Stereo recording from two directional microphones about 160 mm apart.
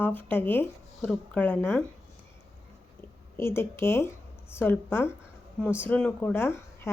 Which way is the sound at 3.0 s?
15° left (ahead or behind).